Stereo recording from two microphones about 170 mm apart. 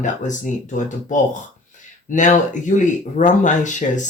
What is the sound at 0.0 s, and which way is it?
Speech, 45° left (ahead or behind).